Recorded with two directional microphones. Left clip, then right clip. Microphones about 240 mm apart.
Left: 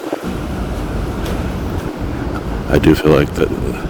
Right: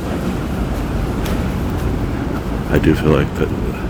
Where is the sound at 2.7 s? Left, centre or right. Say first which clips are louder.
Left 4 dB; left.